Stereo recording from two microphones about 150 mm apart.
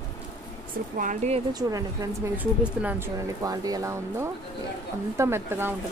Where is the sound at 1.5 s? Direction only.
25° right (ahead or behind).